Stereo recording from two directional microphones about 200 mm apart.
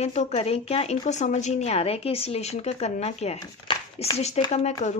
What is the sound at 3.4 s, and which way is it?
Speech, 20° left (ahead or behind).